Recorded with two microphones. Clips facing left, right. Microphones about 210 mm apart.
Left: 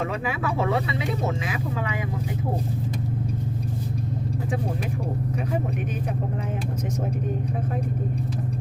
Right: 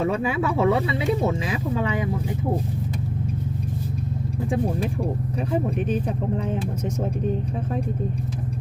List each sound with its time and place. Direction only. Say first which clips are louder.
0.0 s speech: right 5 dB; 30° right (ahead or behind)